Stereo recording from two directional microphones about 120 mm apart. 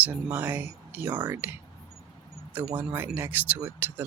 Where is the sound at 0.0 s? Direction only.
15° right (ahead or behind).